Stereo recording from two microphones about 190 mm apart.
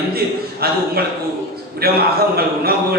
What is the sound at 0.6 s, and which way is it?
Speech, 55° right (ahead or behind).